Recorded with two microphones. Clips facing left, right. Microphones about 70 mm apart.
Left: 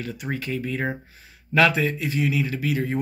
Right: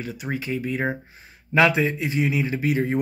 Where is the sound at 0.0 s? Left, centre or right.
Centre.